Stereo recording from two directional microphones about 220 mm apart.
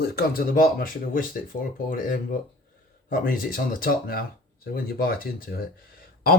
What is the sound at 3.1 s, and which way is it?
Speech, 40° left (ahead or behind).